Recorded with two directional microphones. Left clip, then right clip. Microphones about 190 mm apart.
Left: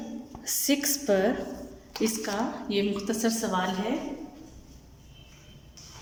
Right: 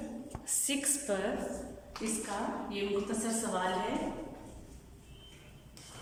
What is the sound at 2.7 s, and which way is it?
Speech, 55° left (ahead or behind).